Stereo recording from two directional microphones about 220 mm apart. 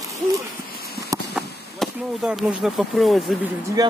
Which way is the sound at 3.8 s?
15° right (ahead or behind).